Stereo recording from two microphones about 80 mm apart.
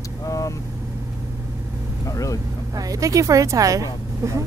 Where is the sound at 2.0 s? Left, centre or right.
Left.